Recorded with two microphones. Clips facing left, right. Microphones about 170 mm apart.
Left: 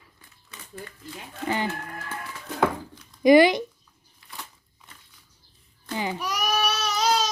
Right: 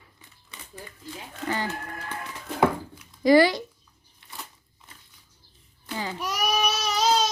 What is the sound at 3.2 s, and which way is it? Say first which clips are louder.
Speech: left 2 dB; 20° left (ahead or behind).